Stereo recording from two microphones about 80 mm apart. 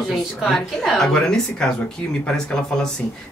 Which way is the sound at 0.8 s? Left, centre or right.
Centre.